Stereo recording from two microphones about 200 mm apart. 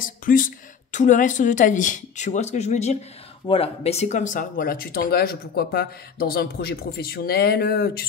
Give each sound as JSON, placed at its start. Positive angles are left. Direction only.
{"t": 0.0, "sound": "speech", "side_deg": 45}